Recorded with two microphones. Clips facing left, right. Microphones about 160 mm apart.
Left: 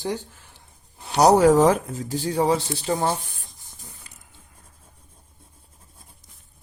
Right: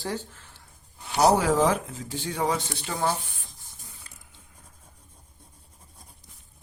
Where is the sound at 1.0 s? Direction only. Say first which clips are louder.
Left 6 dB; 40° left (ahead or behind).